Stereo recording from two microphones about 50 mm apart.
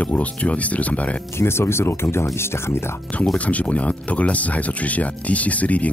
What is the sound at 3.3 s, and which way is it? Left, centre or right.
Speech, left.